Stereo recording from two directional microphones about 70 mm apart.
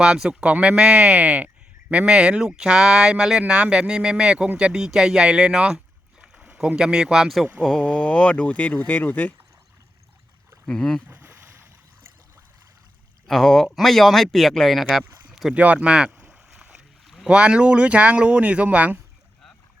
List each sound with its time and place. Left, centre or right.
0.0 s speech: centre
7.6 s speech: centre
10.7 s speech: centre
11.1 s boat: right
13.2 s speech: centre
15.5 s boat: right
17.2 s speech: centre